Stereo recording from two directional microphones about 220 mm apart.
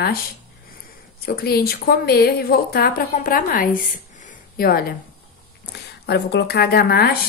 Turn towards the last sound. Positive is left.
turn(degrees=45)  # may be behind; listen again after turning